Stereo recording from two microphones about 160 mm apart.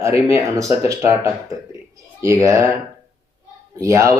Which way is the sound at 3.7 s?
20° right (ahead or behind).